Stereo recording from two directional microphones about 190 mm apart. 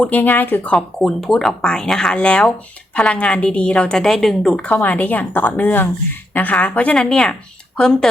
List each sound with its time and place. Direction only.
0.0 s a woman's voice: 10° left (ahead or behind)